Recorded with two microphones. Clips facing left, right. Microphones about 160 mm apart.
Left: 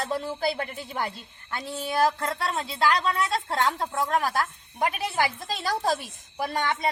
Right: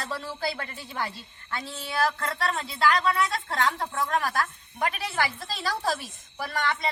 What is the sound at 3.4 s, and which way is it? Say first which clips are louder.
A woman's voice: left 1 dB; 20° left (ahead or behind).